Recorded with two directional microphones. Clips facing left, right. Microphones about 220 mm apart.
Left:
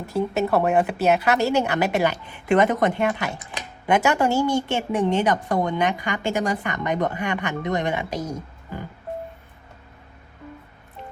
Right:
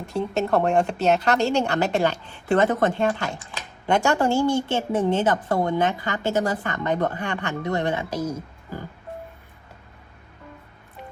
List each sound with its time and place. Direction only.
0.0 s a woman's voice: 5° left (ahead or behind)